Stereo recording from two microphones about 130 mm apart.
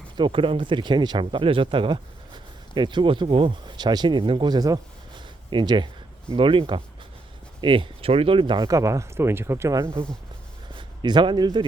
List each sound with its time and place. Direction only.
0.2 s speech: 40° right (ahead or behind)
8.7 s speech: 25° right (ahead or behind)
10.8 s a man's voice: 35° right (ahead or behind)